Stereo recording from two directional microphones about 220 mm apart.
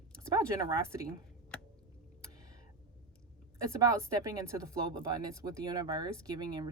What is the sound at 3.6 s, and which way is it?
Speech, 15° right (ahead or behind).